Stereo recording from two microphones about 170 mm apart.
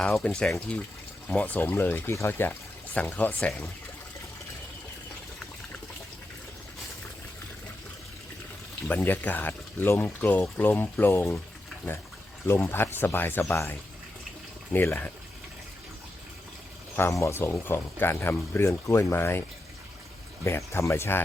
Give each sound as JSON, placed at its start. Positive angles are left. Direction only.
{"t": 0.0, "sound": "speech", "side_deg": 5}
{"t": 8.9, "sound": "speech", "side_deg": 10}
{"t": 12.5, "sound": "speech", "side_deg": 15}
{"t": 17.0, "sound": "speech", "side_deg": 15}
{"t": 20.4, "sound": "speech", "side_deg": 15}